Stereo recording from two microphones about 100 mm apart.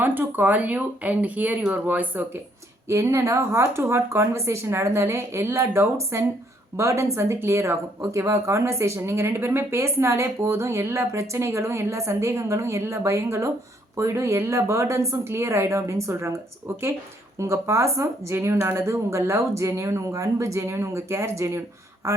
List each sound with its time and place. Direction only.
0.0 s speech: 20° right (ahead or behind)
2.8 s a woman's voice: 30° right (ahead or behind)